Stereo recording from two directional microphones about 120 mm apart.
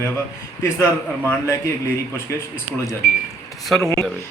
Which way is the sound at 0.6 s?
20° left (ahead or behind).